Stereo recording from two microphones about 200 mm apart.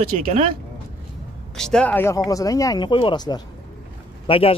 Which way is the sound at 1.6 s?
5° left (ahead or behind).